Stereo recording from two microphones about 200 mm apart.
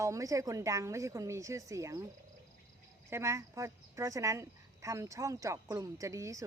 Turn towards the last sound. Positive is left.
turn(degrees=-15)  # may be behind; listen again after turning